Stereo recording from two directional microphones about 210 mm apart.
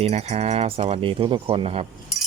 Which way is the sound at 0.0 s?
30° right (ahead or behind).